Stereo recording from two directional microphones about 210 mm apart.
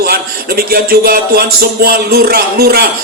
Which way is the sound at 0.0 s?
45° right (ahead or behind).